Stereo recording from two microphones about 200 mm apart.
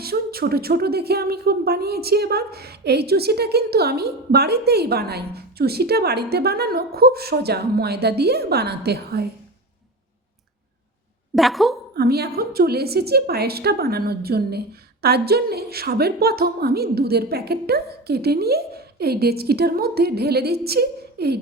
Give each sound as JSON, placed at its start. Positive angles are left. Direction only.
{"t": 0.0, "sound": "a woman's voice", "side_deg": -50}
{"t": 11.3, "sound": "a woman's voice", "side_deg": 0}
{"t": 11.9, "sound": "a woman's voice", "side_deg": -50}